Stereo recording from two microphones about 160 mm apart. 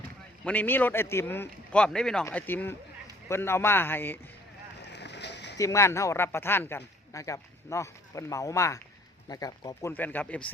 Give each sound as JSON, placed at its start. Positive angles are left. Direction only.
{"t": 0.4, "sound": "a man's voice", "side_deg": 10}
{"t": 4.8, "sound": "a sound", "side_deg": 90}
{"t": 5.5, "sound": "speech", "side_deg": 20}
{"t": 9.9, "sound": "a man's voice", "side_deg": 10}